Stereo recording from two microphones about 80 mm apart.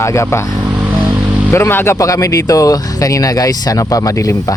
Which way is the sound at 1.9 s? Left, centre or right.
Left.